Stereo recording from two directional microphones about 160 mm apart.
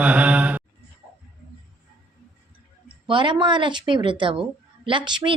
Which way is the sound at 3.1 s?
30° right (ahead or behind).